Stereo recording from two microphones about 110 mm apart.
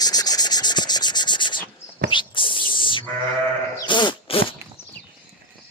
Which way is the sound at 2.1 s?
50° left (ahead or behind).